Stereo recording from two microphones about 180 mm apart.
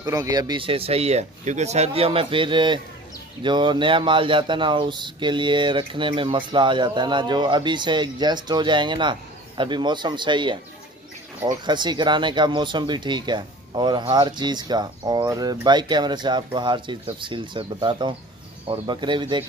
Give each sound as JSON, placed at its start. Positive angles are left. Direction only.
{"t": 0.0, "sound": "speech", "side_deg": -20}
{"t": 11.6, "sound": "speech", "side_deg": -25}